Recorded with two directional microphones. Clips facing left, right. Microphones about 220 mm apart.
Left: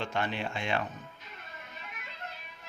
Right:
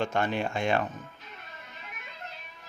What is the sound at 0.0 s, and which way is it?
Speech, 45° right (ahead or behind).